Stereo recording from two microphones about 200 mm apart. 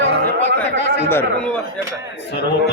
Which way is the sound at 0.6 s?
60° left (ahead or behind).